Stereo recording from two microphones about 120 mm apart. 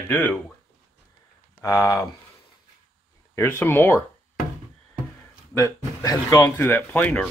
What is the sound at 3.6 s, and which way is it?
Speech, 20° left (ahead or behind).